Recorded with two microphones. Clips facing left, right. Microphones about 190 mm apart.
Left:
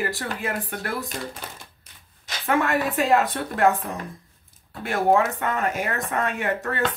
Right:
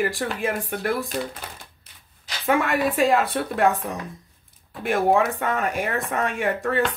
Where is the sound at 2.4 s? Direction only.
15° right (ahead or behind).